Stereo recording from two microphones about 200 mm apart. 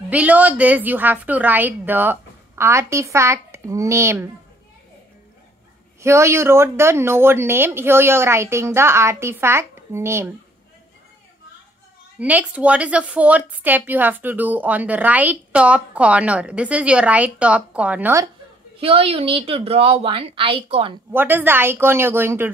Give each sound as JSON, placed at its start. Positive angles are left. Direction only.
{"t": 0.1, "sound": "a woman's voice", "side_deg": -5}
{"t": 5.9, "sound": "a woman's voice", "side_deg": -15}
{"t": 12.2, "sound": "a woman's voice", "side_deg": -5}
{"t": 18.8, "sound": "a woman's voice", "side_deg": -30}
{"t": 21.1, "sound": "a woman's voice", "side_deg": -10}